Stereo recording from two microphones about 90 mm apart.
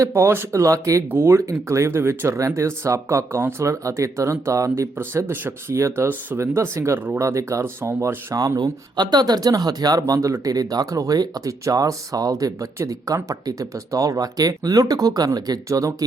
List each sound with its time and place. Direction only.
0.0 s speech: 30° right (ahead or behind)
7.2 s speech: 35° right (ahead or behind)